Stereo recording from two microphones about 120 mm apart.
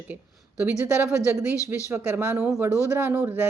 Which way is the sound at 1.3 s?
15° right (ahead or behind).